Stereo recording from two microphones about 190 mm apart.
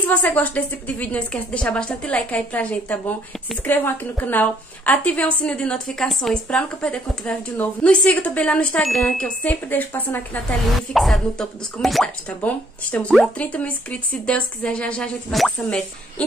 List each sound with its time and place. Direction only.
0.1 s a woman's voice: 10° left (ahead or behind)